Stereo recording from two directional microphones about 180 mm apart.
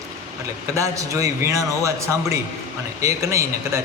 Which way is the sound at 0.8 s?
15° right (ahead or behind).